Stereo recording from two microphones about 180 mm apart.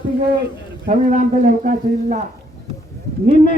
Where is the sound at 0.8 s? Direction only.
45° right (ahead or behind).